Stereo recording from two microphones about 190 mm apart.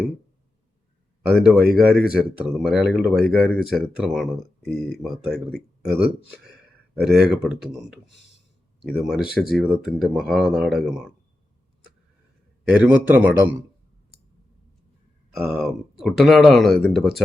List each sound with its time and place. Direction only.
1.3 s speech: 5° right (ahead or behind)
9.2 s speech: 50° left (ahead or behind)
9.6 s speech: centre (ahead or behind)
12.6 s a man's voice: 5° right (ahead or behind)
15.4 s speech: centre (ahead or behind)